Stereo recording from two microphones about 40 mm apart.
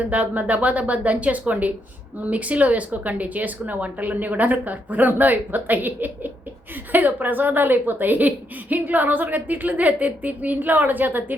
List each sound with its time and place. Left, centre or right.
0.0 s speech: right